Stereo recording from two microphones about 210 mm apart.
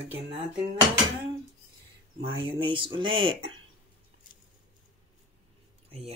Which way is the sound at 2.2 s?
25° right (ahead or behind).